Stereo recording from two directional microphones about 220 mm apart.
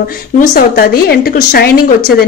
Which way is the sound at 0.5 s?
40° left (ahead or behind).